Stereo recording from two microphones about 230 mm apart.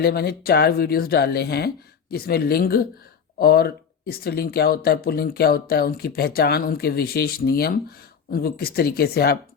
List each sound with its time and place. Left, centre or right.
0.0 s speech: left